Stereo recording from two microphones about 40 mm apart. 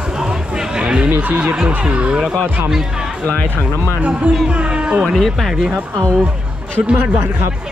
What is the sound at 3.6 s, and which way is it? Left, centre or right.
Speech, right.